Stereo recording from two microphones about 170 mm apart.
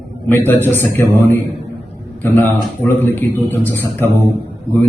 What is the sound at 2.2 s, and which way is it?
A man's voice, 10° left (ahead or behind).